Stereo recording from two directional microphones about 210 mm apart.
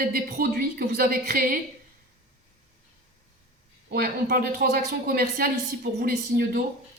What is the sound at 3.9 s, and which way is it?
Speech, 45° right (ahead or behind).